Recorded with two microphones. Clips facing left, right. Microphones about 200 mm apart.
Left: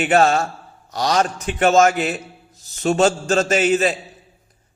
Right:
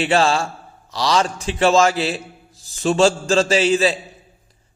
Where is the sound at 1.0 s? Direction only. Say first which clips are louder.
Even; 30° right (ahead or behind).